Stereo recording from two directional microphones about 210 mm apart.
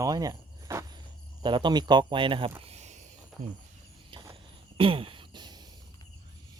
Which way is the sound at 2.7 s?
35° right (ahead or behind).